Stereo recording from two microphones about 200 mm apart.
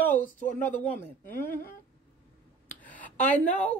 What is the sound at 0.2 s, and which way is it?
Speech, 40° left (ahead or behind).